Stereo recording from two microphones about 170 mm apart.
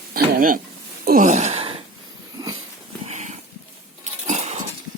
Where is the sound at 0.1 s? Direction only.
55° right (ahead or behind).